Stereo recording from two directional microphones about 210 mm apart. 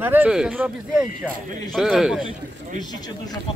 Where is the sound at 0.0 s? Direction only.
10° right (ahead or behind).